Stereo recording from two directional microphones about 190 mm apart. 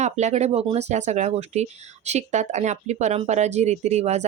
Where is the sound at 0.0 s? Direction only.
35° right (ahead or behind).